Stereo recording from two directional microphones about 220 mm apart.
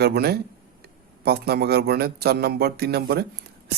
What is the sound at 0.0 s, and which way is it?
Speech, 45° right (ahead or behind).